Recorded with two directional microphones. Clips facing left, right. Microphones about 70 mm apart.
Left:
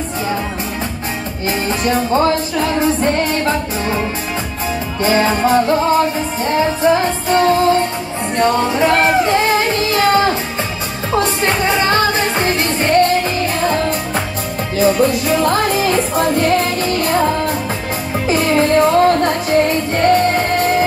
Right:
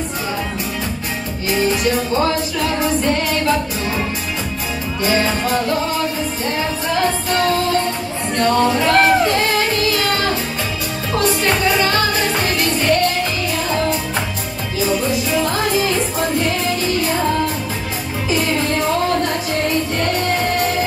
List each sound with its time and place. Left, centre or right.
1.9 s music: left
5.0 s music: left
14.8 s music: left
18.3 s music: left